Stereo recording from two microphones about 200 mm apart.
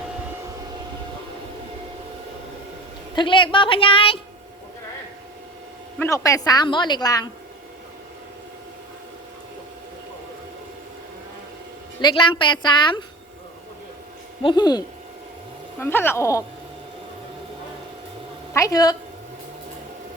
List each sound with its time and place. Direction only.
3.2 s a woman's voice: 25° left (ahead or behind)
6.0 s a woman's voice: 15° left (ahead or behind)
11.9 s a woman's voice: 25° left (ahead or behind)
14.4 s a woman's voice: 20° left (ahead or behind)
15.8 s a woman's voice: 10° left (ahead or behind)
18.5 s a woman's voice: 15° left (ahead or behind)